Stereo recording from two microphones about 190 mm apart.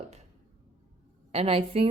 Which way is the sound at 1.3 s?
30° right (ahead or behind).